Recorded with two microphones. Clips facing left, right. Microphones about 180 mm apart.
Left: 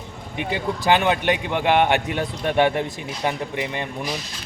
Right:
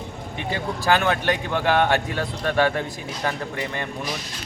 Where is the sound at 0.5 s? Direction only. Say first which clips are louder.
Left 2 dB; 20° left (ahead or behind).